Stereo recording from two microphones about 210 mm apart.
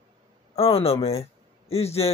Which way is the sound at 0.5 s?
25° left (ahead or behind).